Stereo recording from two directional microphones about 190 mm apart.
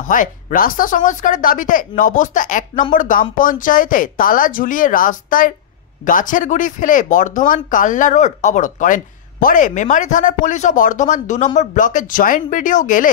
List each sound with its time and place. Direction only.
0.0 s speech: 45° left (ahead or behind)